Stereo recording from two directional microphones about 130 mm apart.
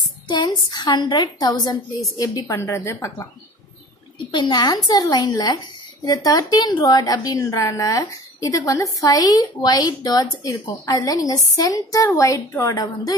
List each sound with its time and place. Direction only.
0.3 s a woman's voice: 35° left (ahead or behind)
2.4 s a woman's voice: 20° left (ahead or behind)
4.3 s a woman's voice: 40° left (ahead or behind); by 12.7 s 20° left (ahead or behind)
12.7 s a woman's voice: 35° left (ahead or behind)